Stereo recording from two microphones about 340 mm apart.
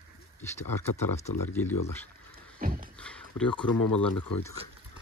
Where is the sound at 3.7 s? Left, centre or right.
Left.